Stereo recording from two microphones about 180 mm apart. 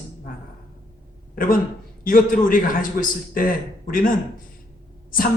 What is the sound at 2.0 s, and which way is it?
A man's voice, 50° left (ahead or behind).